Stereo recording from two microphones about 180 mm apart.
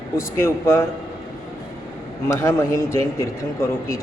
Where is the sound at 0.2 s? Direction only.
15° left (ahead or behind).